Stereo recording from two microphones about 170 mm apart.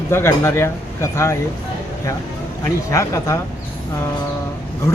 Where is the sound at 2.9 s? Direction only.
15° left (ahead or behind).